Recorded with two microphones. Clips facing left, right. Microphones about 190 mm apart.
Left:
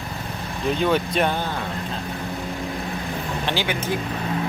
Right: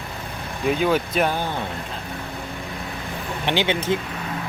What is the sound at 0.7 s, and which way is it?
Speech, 5° right (ahead or behind).